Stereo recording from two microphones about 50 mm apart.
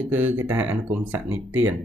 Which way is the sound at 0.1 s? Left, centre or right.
Right.